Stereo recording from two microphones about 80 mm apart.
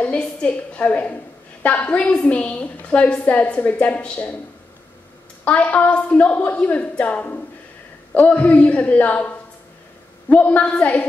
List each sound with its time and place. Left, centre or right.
0.0 s a woman's voice: centre
5.4 s a woman's voice: centre